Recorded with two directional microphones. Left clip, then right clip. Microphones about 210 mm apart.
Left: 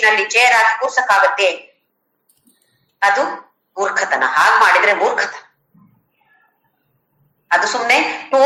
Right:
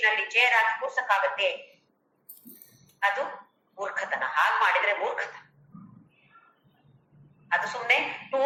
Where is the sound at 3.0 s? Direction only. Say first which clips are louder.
Left 12 dB; 50° left (ahead or behind).